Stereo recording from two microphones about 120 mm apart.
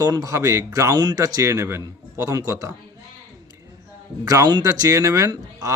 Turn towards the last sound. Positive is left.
turn(degrees=-25)  # may be behind; listen again after turning